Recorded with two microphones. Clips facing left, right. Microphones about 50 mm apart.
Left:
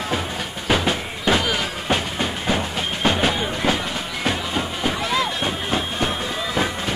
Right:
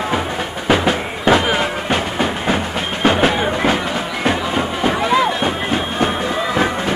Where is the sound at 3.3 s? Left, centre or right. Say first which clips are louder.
Right 5 dB; right.